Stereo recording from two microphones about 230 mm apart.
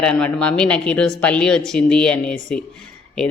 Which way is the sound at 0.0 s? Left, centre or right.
Centre.